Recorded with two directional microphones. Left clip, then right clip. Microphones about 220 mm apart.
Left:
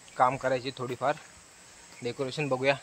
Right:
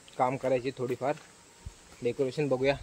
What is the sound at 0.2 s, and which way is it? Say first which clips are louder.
Speech: left 2 dB; 5° right (ahead or behind).